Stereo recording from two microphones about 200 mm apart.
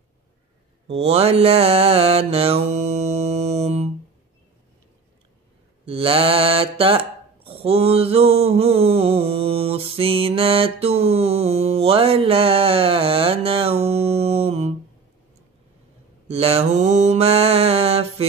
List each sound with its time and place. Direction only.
0.8 s mantra: 30° right (ahead or behind)
5.9 s mantra: 30° right (ahead or behind)
16.3 s mantra: 30° right (ahead or behind)